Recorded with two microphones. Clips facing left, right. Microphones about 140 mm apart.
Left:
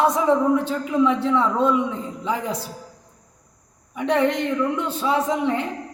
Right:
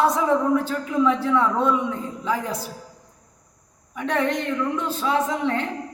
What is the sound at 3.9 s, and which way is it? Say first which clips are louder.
A man's voice: left 3 dB; 20° left (ahead or behind).